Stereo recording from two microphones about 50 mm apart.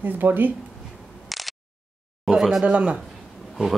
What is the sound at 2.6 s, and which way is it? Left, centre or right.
Speech, right.